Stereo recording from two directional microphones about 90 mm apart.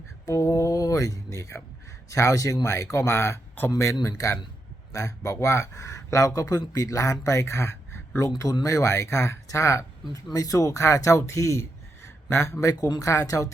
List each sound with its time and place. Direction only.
0.3 s speech: 35° left (ahead or behind)
4.9 s speech: 35° left (ahead or behind)
12.7 s speech: 45° left (ahead or behind)